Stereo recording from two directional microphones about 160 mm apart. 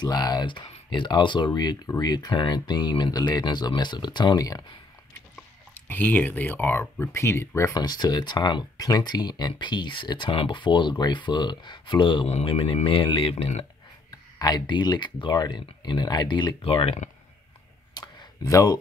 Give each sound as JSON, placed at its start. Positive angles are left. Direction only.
{"t": 0.0, "sound": "speech", "side_deg": 25}
{"t": 5.3, "sound": "speech", "side_deg": 10}
{"t": 14.4, "sound": "speech", "side_deg": 25}
{"t": 17.9, "sound": "a sound", "side_deg": 25}